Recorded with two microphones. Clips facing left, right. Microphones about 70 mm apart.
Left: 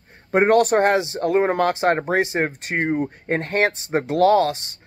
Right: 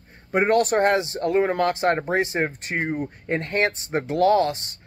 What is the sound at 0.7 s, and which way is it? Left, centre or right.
Speech, left.